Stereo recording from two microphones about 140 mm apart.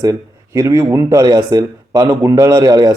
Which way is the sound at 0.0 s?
25° right (ahead or behind).